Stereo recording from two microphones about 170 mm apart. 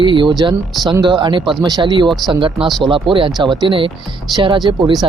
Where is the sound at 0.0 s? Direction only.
30° right (ahead or behind).